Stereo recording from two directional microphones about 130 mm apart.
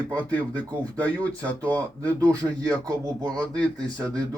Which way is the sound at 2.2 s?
25° right (ahead or behind).